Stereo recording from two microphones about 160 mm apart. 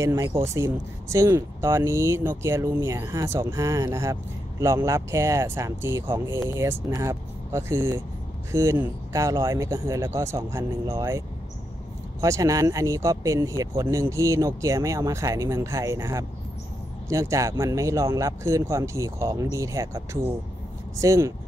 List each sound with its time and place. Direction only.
0.0 s speech: 20° right (ahead or behind)